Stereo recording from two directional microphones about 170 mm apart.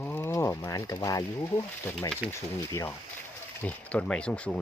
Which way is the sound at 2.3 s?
15° left (ahead or behind).